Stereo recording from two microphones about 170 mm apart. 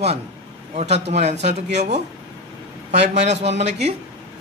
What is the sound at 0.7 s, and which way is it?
A man's voice, 40° right (ahead or behind).